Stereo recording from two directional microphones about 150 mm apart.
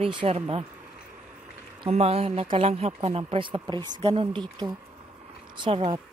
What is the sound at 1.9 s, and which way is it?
Speech, 45° right (ahead or behind).